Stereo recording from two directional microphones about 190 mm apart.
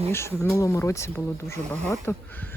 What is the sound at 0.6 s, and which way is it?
Speech, 15° left (ahead or behind).